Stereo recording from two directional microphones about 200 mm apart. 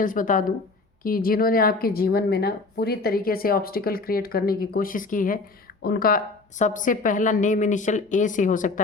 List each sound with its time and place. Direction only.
0.0 s a woman's voice: 40° left (ahead or behind)